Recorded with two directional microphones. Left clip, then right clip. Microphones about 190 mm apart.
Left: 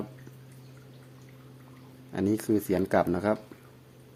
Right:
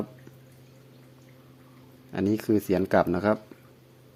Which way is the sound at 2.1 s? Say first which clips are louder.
Right 2 dB; 15° right (ahead or behind).